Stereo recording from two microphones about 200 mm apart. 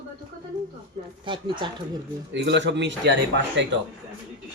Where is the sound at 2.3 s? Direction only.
60° right (ahead or behind).